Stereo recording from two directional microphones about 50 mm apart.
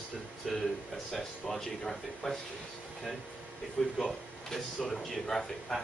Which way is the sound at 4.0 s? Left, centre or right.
Centre.